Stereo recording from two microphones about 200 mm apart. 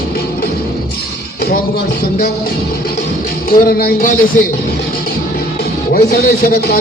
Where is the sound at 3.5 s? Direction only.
50° left (ahead or behind).